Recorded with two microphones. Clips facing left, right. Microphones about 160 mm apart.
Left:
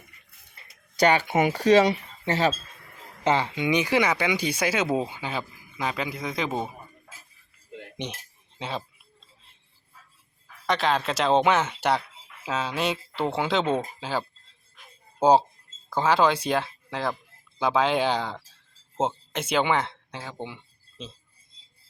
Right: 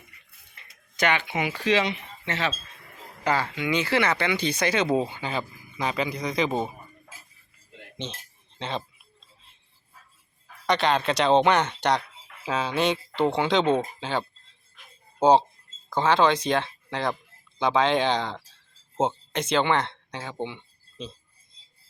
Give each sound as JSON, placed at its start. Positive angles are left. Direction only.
{"t": 0.5, "sound": "speech", "side_deg": 35}
{"t": 3.2, "sound": "speech", "side_deg": 20}
{"t": 7.9, "sound": "chink", "side_deg": 15}
{"t": 10.7, "sound": "speech", "side_deg": 0}